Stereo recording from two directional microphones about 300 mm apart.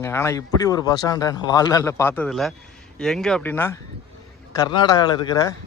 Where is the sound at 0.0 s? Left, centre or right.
Centre.